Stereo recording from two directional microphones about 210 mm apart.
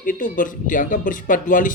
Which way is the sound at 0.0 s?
40° left (ahead or behind).